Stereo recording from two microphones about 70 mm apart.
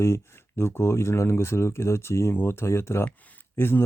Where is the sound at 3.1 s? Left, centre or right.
Left.